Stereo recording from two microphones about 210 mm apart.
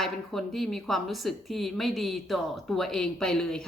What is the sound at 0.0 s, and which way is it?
Speech, centre (ahead or behind).